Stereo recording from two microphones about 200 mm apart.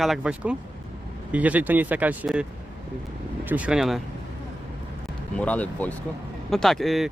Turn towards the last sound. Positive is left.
turn(degrees=0)  # may be behind; listen again after turning